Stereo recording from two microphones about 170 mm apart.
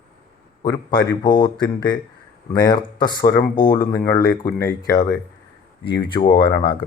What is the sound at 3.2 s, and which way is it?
Speech, 55° left (ahead or behind).